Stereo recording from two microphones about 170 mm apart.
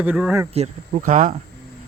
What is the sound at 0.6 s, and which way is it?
Speech, 45° right (ahead or behind).